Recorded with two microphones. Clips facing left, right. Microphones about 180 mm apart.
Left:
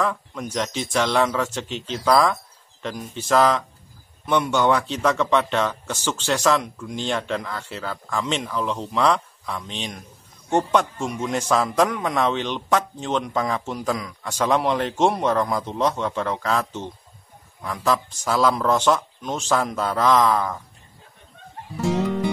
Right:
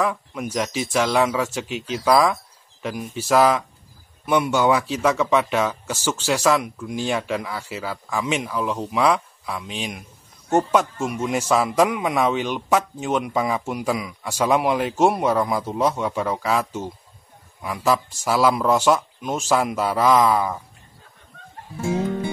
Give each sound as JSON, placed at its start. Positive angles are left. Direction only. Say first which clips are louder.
{"t": 0.0, "sound": "a man's voice", "louder": "right 1 dB", "side_deg": -10}